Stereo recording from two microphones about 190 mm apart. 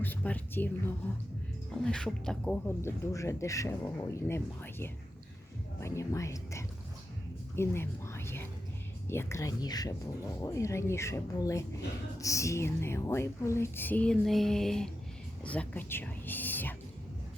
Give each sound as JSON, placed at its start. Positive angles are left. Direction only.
{"t": 0.0, "sound": "speech", "side_deg": 10}